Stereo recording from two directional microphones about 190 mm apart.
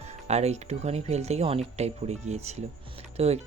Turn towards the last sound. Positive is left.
turn(degrees=-35)  # may be behind; listen again after turning